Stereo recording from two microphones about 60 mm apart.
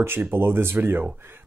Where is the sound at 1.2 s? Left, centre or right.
Right.